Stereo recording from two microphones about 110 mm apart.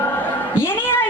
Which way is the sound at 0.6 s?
20° left (ahead or behind).